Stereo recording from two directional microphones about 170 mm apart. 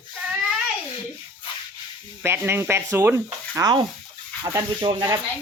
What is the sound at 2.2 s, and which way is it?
Speech, 15° right (ahead or behind).